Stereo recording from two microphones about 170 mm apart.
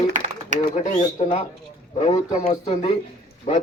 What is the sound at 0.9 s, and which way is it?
Speech, 30° left (ahead or behind).